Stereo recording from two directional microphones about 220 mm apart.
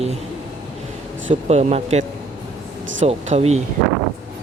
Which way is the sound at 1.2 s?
30° right (ahead or behind).